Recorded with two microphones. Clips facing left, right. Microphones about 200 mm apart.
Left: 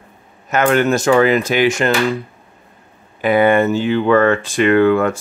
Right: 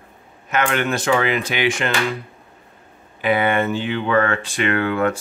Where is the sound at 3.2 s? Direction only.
45° left (ahead or behind).